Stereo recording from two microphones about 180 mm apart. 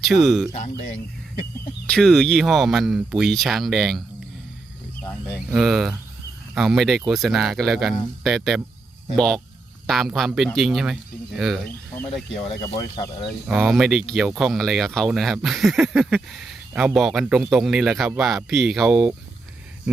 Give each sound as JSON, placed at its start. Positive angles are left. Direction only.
{"t": 0.0, "sound": "speech", "side_deg": 0}
{"t": 0.5, "sound": "speech", "side_deg": 40}
{"t": 1.9, "sound": "speech", "side_deg": 5}
{"t": 5.5, "sound": "speech", "side_deg": 0}
{"t": 12.6, "sound": "speech", "side_deg": 20}
{"t": 13.5, "sound": "speech", "side_deg": 0}